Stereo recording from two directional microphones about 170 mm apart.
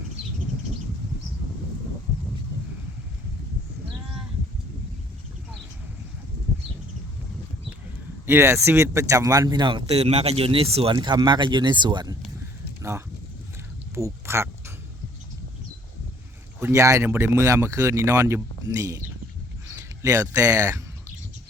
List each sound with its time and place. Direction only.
8.3 s speech: 15° right (ahead or behind)
13.9 s duck: 15° right (ahead or behind)
16.6 s speech: 15° right (ahead or behind)
19.6 s a sound: 15° right (ahead or behind)
20.3 s speech: 20° right (ahead or behind)